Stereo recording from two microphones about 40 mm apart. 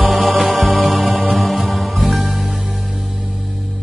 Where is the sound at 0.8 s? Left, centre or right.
Centre.